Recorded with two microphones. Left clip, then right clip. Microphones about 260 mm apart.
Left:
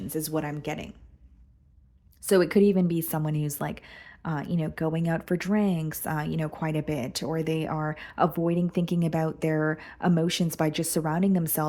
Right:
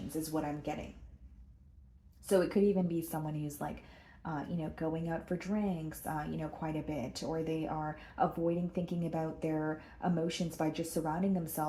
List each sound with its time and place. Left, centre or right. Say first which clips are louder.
0.2 s speech: left 6 dB; left
2.2 s speech: left 8 dB; left